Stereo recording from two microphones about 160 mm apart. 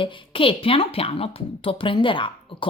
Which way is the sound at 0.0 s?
35° left (ahead or behind).